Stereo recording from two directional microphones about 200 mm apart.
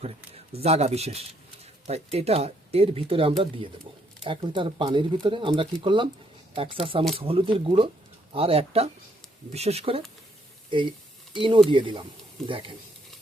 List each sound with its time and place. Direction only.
0.0 s speech: 30° right (ahead or behind)